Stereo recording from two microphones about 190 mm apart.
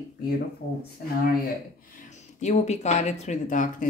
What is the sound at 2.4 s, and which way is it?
Speech, 35° left (ahead or behind).